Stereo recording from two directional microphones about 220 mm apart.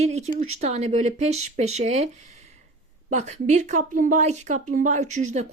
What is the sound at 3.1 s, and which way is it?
A woman's voice, 30° right (ahead or behind).